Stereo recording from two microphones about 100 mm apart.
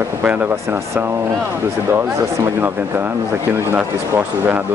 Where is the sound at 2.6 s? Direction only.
20° right (ahead or behind).